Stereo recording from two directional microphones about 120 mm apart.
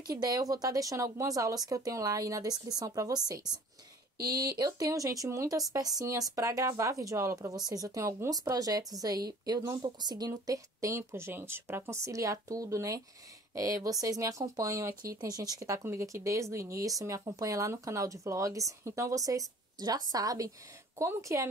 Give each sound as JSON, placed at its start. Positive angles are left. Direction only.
{"t": 0.0, "sound": "speech", "side_deg": -35}
{"t": 4.4, "sound": "speech", "side_deg": -30}